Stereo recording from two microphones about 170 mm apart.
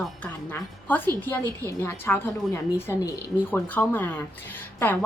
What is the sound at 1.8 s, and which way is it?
A woman's voice, 15° left (ahead or behind).